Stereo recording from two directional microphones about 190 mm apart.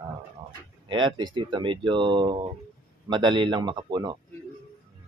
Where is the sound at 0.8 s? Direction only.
25° right (ahead or behind).